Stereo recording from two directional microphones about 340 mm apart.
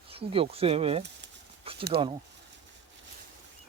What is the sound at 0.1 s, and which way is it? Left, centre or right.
Speech, centre.